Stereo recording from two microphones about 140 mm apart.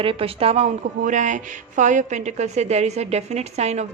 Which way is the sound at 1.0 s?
65° right (ahead or behind).